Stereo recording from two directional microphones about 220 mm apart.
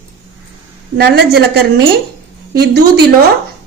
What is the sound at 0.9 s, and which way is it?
Speech, 45° right (ahead or behind).